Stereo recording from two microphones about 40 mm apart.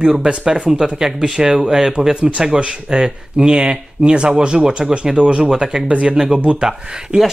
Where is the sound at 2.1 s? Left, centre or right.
Right.